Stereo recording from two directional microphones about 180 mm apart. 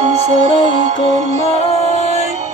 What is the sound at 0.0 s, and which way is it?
Music, 40° right (ahead or behind).